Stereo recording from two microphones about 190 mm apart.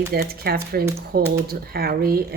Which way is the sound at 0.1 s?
55° right (ahead or behind).